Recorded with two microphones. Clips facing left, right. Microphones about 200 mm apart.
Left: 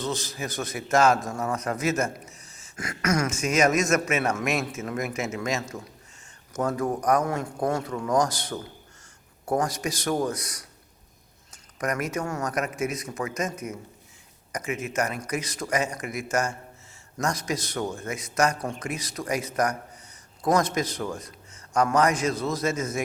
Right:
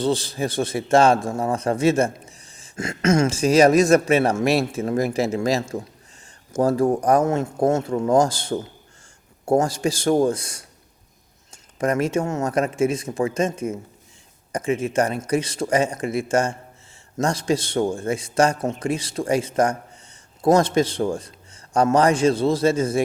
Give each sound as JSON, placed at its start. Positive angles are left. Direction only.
{"t": 0.0, "sound": "a man's voice", "side_deg": -30}